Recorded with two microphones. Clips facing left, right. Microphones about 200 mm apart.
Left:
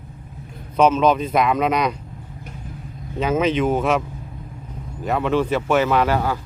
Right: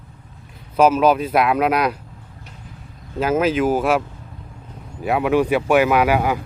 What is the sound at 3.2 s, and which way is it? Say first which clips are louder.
Speech: right 1 dB; 5° right (ahead or behind).